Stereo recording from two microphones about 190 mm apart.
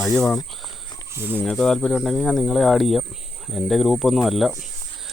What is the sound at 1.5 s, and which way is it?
Speech, 5° left (ahead or behind).